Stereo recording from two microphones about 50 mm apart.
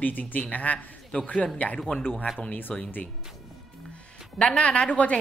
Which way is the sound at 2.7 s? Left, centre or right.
Centre.